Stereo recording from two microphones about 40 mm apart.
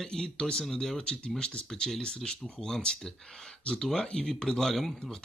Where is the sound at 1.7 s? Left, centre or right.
Centre.